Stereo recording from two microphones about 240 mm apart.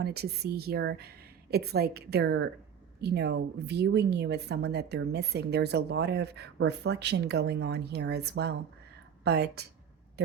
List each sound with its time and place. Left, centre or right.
0.0 s a woman's voice: right